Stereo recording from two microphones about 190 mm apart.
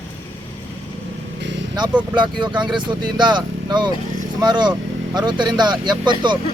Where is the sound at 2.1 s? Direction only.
25° right (ahead or behind).